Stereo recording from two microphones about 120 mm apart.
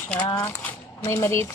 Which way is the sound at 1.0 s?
25° left (ahead or behind).